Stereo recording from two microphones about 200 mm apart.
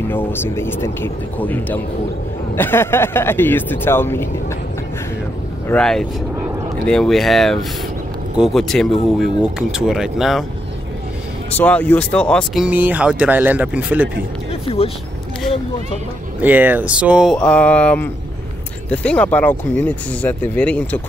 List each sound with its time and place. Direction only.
0.1 s speech: 10° left (ahead or behind)
5.7 s speech: 5° left (ahead or behind)
11.5 s speech: 5° left (ahead or behind)
14.5 s a sound: 30° left (ahead or behind)
16.3 s speech: 10° right (ahead or behind)